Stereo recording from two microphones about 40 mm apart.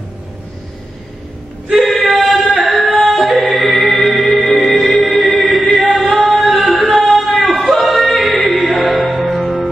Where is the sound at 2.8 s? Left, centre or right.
Centre.